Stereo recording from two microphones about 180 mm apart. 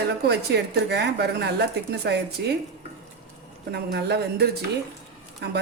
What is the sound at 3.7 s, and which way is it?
A woman's voice, 65° right (ahead or behind).